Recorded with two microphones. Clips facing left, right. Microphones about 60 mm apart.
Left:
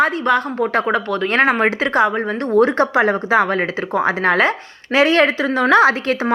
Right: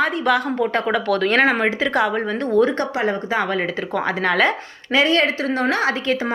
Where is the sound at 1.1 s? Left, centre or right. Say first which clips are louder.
Right 3 dB; centre.